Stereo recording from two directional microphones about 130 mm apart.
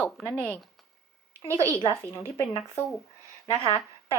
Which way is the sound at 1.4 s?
20° right (ahead or behind).